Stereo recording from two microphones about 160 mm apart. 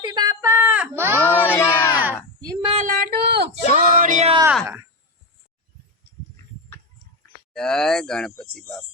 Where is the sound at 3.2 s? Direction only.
90° right.